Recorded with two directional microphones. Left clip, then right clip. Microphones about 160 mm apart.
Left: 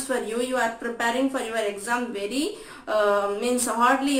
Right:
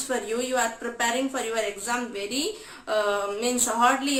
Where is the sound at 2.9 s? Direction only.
25° right (ahead or behind).